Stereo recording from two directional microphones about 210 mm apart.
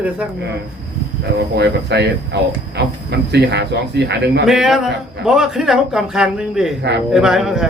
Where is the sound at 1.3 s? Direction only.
55° right (ahead or behind).